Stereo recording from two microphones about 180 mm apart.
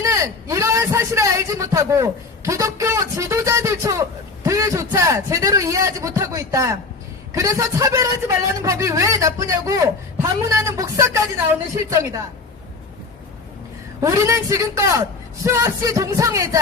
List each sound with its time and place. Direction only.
0.0 s a man's voice: 15° right (ahead or behind)
14.0 s a man's voice: 15° right (ahead or behind)